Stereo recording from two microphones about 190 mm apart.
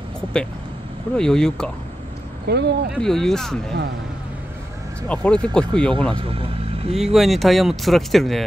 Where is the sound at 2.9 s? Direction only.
Centre (ahead or behind).